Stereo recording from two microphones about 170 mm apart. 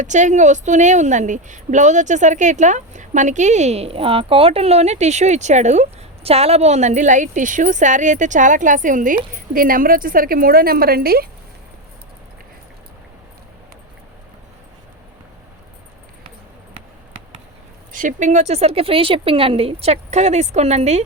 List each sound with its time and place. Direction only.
0.0 s a woman's voice: 45° right (ahead or behind); by 11.3 s 60° right (ahead or behind)
17.9 s speech: 50° right (ahead or behind)